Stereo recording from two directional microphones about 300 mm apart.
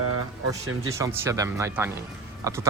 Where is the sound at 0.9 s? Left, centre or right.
Centre.